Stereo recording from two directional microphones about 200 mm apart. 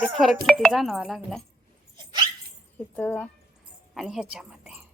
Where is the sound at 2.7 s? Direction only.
10° left (ahead or behind).